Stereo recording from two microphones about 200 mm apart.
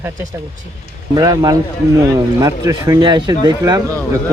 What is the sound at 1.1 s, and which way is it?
Speech, 20° right (ahead or behind).